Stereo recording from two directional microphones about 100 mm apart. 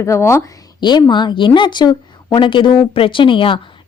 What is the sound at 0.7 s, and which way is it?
A woman's voice, 45° left (ahead or behind).